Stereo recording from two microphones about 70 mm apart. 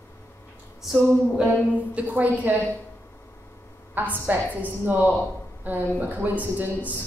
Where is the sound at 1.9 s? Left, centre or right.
Right.